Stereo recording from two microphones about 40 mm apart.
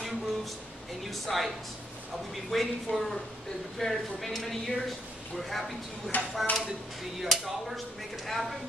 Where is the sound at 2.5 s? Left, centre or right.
Centre.